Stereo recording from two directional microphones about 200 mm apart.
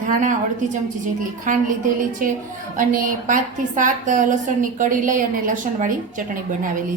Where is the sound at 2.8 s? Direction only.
40° right (ahead or behind).